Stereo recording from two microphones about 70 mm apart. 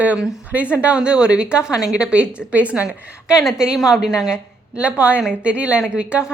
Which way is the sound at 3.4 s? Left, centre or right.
Centre.